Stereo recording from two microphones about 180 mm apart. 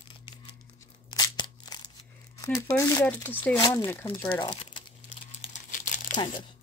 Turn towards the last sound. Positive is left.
turn(degrees=45)  # may be behind; listen again after turning